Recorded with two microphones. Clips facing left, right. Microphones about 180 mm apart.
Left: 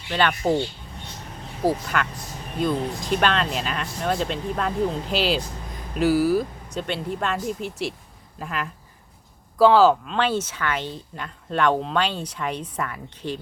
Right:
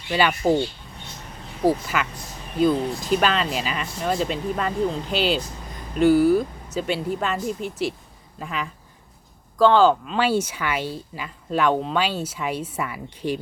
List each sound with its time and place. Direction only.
0.1 s speech: 5° right (ahead or behind)
1.6 s speech: 5° right (ahead or behind)